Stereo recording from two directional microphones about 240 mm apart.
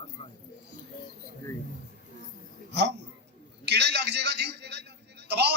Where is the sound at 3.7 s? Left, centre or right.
Right.